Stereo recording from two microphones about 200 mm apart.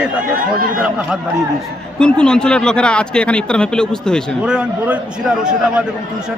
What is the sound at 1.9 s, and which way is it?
Speech, 5° left (ahead or behind).